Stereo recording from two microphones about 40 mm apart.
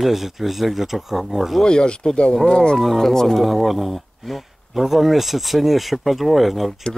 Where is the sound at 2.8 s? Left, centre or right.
Centre.